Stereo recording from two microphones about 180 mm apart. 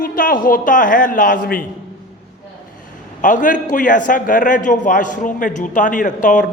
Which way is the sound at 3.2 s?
45° left (ahead or behind).